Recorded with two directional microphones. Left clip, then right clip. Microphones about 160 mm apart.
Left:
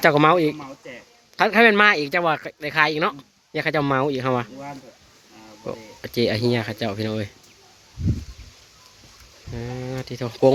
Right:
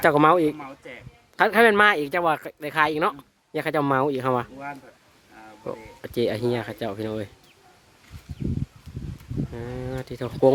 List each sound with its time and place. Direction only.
0.0 s speech: 25° right (ahead or behind)
1.4 s speech: 30° right (ahead or behind)
5.6 s speech: 25° right (ahead or behind)
9.6 s speech: 25° right (ahead or behind)